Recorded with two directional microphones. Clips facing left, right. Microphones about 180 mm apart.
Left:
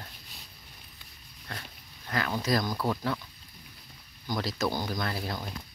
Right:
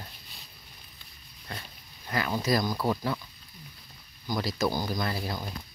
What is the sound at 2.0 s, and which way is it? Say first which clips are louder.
Speech: right 1 dB; 5° right (ahead or behind).